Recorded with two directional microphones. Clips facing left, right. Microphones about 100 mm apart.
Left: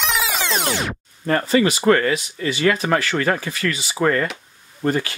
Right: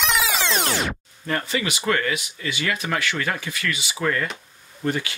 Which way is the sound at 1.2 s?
40° left (ahead or behind).